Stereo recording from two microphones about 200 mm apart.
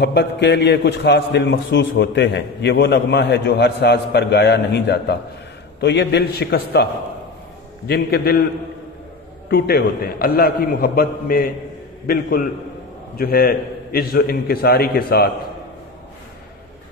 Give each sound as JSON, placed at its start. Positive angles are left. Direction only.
{"t": 0.0, "sound": "a man's voice", "side_deg": 55}
{"t": 9.5, "sound": "a man's voice", "side_deg": 50}